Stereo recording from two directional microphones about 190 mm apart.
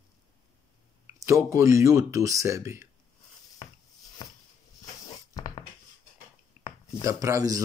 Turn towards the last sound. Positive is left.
turn(degrees=-20)  # may be behind; listen again after turning